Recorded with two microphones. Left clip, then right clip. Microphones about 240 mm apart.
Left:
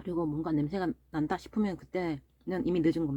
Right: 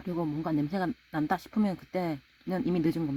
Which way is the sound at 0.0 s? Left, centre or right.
Right.